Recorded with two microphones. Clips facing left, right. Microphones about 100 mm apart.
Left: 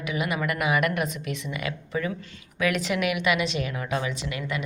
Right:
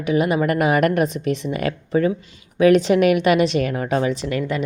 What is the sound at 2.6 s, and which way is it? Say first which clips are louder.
A woman's voice: right 12 dB; 35° right (ahead or behind).